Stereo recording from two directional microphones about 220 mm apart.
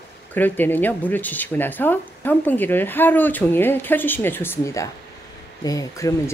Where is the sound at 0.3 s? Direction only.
10° left (ahead or behind).